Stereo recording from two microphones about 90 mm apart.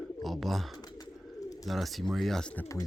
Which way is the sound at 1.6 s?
Centre (ahead or behind).